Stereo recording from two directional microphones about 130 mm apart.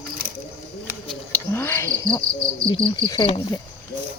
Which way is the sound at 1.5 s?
20° left (ahead or behind).